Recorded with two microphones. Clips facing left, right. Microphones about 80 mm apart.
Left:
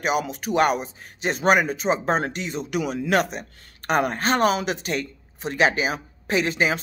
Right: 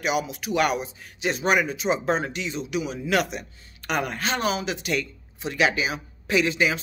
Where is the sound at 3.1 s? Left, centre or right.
Left.